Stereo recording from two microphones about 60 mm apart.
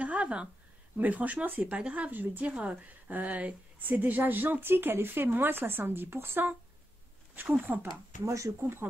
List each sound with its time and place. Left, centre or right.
0.0 s a sound: right
0.9 s speech: right
1.8 s speech: centre
2.0 s a woman's voice: right
7.6 s a woman's voice: right
8.3 s speech: right
8.5 s a woman's voice: right